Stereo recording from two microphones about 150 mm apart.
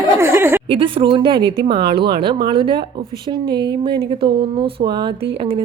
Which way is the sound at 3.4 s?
90° right.